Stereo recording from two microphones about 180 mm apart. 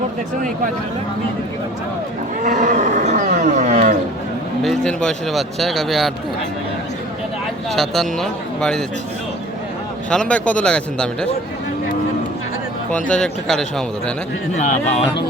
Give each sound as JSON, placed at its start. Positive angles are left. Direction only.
{"t": 2.4, "sound": "roaring cats", "side_deg": -45}
{"t": 4.6, "sound": "speech", "side_deg": 5}
{"t": 7.7, "sound": "speech", "side_deg": 0}
{"t": 10.1, "sound": "speech", "side_deg": 5}
{"t": 12.9, "sound": "speech", "side_deg": 5}
{"t": 14.5, "sound": "speech", "side_deg": 40}